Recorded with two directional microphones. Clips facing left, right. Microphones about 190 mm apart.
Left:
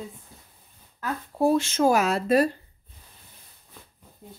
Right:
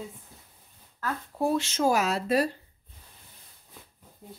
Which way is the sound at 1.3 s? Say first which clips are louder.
Left 5 dB; 45° left (ahead or behind).